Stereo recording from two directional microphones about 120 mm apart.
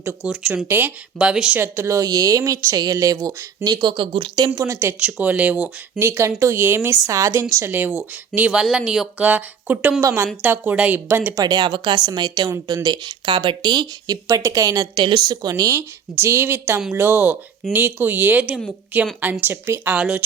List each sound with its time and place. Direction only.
0.0 s speech: 15° right (ahead or behind)
1.5 s speech: 20° right (ahead or behind); by 4.5 s 45° right (ahead or behind)
4.5 s speech: 25° right (ahead or behind)
6.0 s speech: 20° right (ahead or behind)
10.0 s speech: 25° right (ahead or behind)
10.4 s speech: 15° right (ahead or behind)
11.3 s a woman's voice: 35° right (ahead or behind)
16.1 s speech: 20° right (ahead or behind)